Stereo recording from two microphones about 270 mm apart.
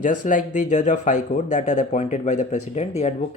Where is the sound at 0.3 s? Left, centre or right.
Left.